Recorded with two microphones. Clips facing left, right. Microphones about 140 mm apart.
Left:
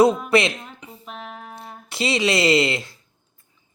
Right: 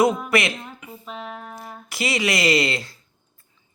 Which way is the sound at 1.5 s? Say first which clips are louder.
Left 5 dB; 25° left (ahead or behind).